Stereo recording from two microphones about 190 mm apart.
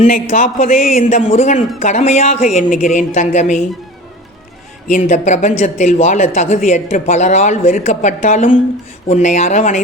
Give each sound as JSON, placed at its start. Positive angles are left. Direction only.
{"t": 0.0, "sound": "a woman's voice", "side_deg": 40}
{"t": 4.9, "sound": "a woman's voice", "side_deg": 40}